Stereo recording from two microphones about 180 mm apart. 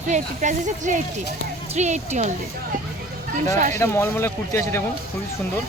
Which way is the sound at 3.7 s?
15° left (ahead or behind).